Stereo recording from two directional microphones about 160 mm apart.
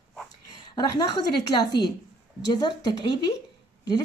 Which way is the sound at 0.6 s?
30° left (ahead or behind).